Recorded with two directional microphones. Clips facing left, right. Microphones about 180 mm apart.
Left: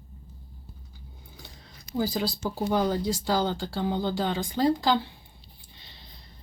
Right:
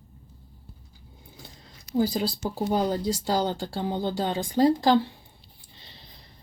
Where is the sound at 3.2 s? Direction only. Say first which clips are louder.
Even; 25° right (ahead or behind).